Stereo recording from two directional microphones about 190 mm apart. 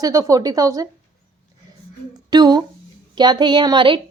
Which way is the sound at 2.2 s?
20° right (ahead or behind).